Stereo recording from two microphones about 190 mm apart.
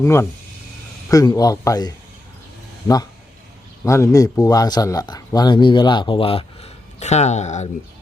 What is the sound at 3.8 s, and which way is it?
Speech, 15° left (ahead or behind).